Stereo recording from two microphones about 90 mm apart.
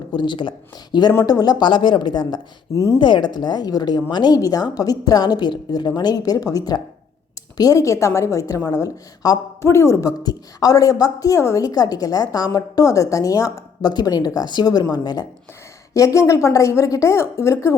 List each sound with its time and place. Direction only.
0.1 s speech: 60° left (ahead or behind)
2.7 s a woman's voice: 35° left (ahead or behind)
3.0 s speech: 60° left (ahead or behind)
4.4 s a woman's voice: 45° left (ahead or behind)
9.6 s a woman's voice: 30° left (ahead or behind); by 15.3 s 50° left (ahead or behind)
16.0 s a woman's voice: 35° left (ahead or behind)